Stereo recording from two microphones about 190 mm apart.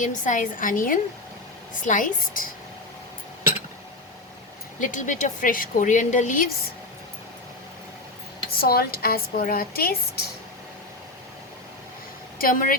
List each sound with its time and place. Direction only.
0.0 s speech: 40° left (ahead or behind)
4.8 s a woman's voice: 40° left (ahead or behind)
8.5 s speech: 55° left (ahead or behind)
12.4 s speech: 45° left (ahead or behind)